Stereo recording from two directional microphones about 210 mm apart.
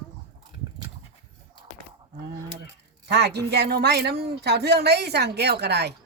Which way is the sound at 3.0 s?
55° right (ahead or behind).